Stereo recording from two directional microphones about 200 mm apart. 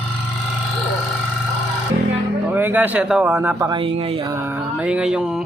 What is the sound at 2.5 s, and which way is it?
A man's voice, 10° right (ahead or behind).